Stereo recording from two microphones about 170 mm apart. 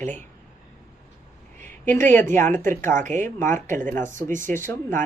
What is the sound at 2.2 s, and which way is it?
Speech, 15° left (ahead or behind).